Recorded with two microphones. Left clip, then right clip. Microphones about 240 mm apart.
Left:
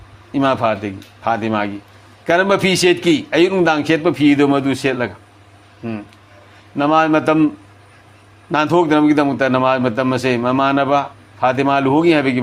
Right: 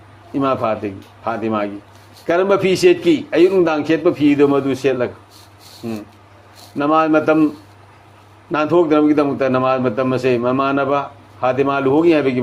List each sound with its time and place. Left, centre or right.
0.3 s a man's voice: left
8.5 s a man's voice: left